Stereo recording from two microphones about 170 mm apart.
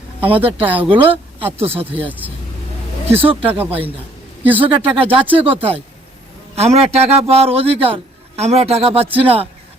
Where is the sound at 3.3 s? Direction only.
35° right (ahead or behind).